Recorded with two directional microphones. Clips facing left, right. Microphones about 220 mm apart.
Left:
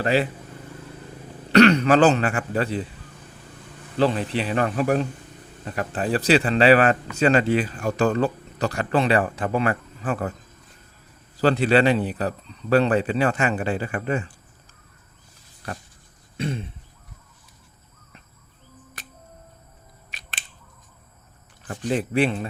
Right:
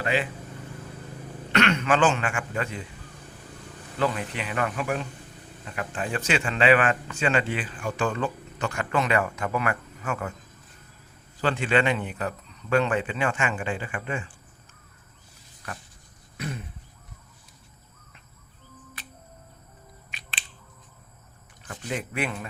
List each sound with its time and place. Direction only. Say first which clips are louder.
0.0 s speech: left 5 dB; 35° left (ahead or behind)
1.5 s speech: left 8 dB; 35° left (ahead or behind)
3.9 s speech: left 6 dB; 30° left (ahead or behind)
11.3 s speech: left 6 dB; 40° left (ahead or behind)
15.6 s a sound: left 5 dB; 30° left (ahead or behind)
19.0 s music: left 3 dB; 45° left (ahead or behind)
21.7 s speech: left 8 dB; 35° left (ahead or behind)